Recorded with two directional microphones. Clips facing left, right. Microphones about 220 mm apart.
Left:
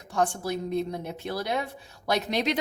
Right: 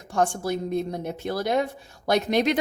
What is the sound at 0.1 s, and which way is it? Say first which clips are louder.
Speech: right 3 dB; 50° right (ahead or behind).